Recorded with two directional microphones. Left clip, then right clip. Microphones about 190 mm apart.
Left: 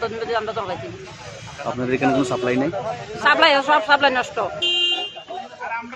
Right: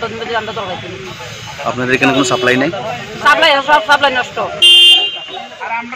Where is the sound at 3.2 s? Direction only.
25° left (ahead or behind).